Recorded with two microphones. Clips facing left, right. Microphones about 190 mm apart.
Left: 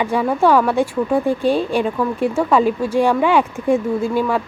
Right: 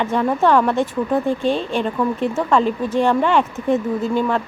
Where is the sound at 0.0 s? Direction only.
10° left (ahead or behind).